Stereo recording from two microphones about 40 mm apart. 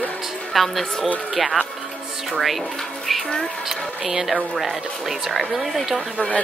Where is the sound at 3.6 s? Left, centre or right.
Centre.